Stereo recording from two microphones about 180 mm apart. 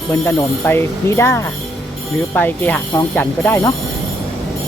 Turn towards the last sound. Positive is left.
turn(degrees=10)  # may be behind; listen again after turning